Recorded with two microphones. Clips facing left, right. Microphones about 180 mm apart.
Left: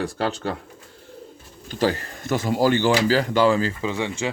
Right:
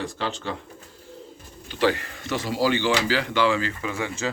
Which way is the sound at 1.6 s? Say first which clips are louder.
Even; 40° left (ahead or behind).